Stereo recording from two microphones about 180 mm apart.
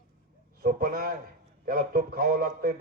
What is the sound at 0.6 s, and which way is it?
A man's voice, 55° right (ahead or behind).